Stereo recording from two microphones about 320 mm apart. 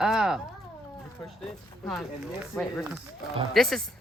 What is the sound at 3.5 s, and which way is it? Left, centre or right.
Speech, centre.